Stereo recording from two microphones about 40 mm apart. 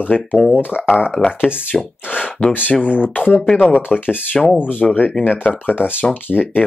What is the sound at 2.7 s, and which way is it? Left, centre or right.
Speech, left.